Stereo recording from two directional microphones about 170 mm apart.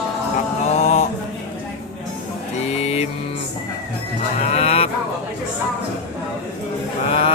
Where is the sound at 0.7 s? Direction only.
40° left (ahead or behind).